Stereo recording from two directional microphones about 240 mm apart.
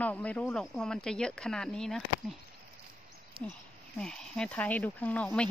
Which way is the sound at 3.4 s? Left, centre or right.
Right.